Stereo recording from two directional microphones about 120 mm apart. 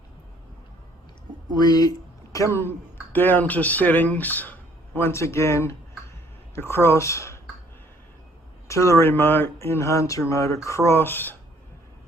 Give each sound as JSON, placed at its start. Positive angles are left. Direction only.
{"t": 1.5, "sound": "speech", "side_deg": 30}
{"t": 8.6, "sound": "speech", "side_deg": 25}